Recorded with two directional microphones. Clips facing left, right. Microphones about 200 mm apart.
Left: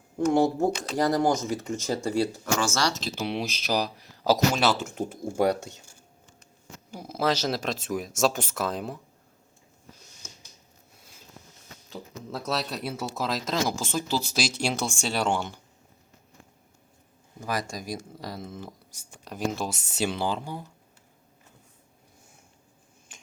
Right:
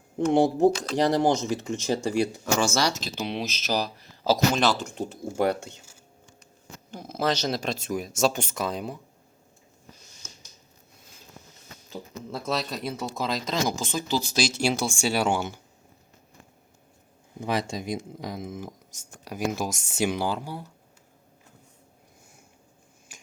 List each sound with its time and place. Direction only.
0.3 s speech: 25° right (ahead or behind)
1.9 s speech: 15° right (ahead or behind)
3.0 s speech: 5° left (ahead or behind)
6.9 s speech: 10° left (ahead or behind)
11.9 s speech: centre (ahead or behind)
17.4 s speech: 25° right (ahead or behind); by 20.7 s 10° right (ahead or behind)